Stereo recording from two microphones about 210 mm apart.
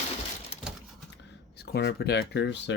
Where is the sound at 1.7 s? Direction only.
50° left (ahead or behind).